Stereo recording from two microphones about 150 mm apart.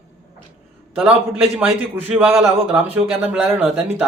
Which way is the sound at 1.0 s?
10° right (ahead or behind).